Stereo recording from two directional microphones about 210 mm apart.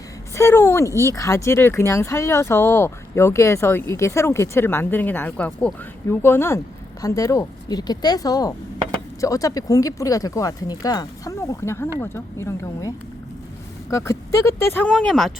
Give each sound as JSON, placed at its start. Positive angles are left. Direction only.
{"t": 0.3, "sound": "speech", "side_deg": 10}
{"t": 13.9, "sound": "speech", "side_deg": 15}